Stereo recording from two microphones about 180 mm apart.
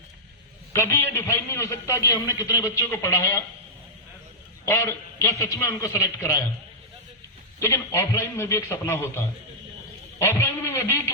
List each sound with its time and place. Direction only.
0.7 s a man's voice: 15° left (ahead or behind)
4.6 s a man's voice: 15° left (ahead or behind)
7.6 s a man's voice: 15° left (ahead or behind)